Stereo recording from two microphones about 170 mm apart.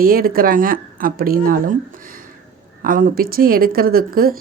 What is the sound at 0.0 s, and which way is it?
Speech, 60° right (ahead or behind).